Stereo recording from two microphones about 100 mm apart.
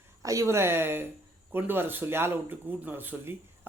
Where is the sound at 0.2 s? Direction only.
35° right (ahead or behind).